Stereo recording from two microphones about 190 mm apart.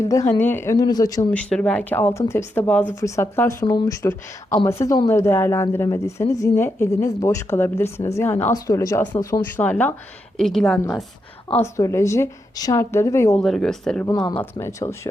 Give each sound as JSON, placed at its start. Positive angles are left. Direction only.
{"t": 0.0, "sound": "a woman's voice", "side_deg": 15}
{"t": 1.3, "sound": "a woman's voice", "side_deg": 5}
{"t": 11.6, "sound": "a woman's voice", "side_deg": 15}
{"t": 13.3, "sound": "speech", "side_deg": 0}
{"t": 14.1, "sound": "a woman's voice", "side_deg": 20}